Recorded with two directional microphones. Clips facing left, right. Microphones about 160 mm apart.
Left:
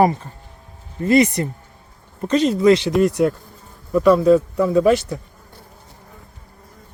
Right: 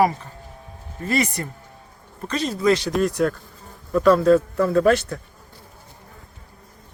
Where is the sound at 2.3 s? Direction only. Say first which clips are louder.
Left 6 dB; 25° left (ahead or behind).